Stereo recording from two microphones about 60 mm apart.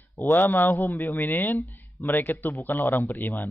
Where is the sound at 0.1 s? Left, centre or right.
Left.